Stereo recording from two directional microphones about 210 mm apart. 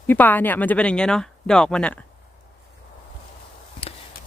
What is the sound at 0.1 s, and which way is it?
Speech, 10° left (ahead or behind).